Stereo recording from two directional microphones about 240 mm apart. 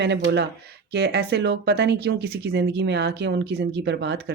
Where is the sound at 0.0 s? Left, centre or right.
Right.